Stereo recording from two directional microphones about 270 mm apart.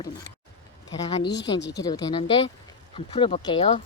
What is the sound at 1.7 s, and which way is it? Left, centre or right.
Speech, centre.